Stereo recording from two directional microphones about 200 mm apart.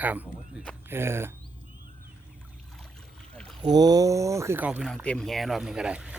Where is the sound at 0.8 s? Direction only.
10° right (ahead or behind).